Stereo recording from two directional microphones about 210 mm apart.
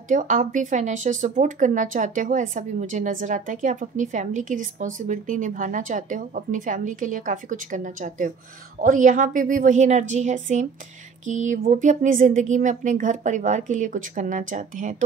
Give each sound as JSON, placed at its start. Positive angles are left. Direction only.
{"t": 0.1, "sound": "speech", "side_deg": -35}